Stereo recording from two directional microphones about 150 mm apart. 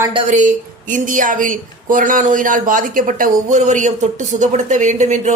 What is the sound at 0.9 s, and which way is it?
A man's voice, 60° right (ahead or behind).